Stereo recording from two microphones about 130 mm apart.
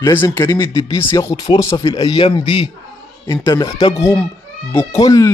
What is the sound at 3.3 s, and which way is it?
Speech, 30° left (ahead or behind).